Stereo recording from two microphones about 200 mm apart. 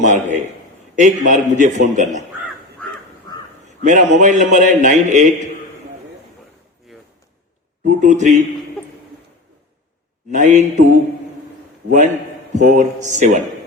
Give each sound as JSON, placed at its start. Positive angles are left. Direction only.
{"t": 0.0, "sound": "a man's voice", "side_deg": -35}
{"t": 3.8, "sound": "a man's voice", "side_deg": -40}
{"t": 7.9, "sound": "a man's voice", "side_deg": -40}
{"t": 10.3, "sound": "a man's voice", "side_deg": -35}
{"t": 12.5, "sound": "a man's voice", "side_deg": -40}